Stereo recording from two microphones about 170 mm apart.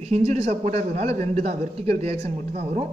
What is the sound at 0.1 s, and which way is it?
A man's voice, 40° right (ahead or behind).